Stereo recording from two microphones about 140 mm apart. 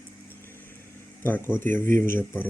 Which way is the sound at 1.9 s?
75° right (ahead or behind).